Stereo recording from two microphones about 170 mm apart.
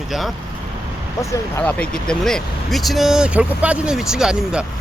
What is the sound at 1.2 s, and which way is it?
Speech, 15° left (ahead or behind).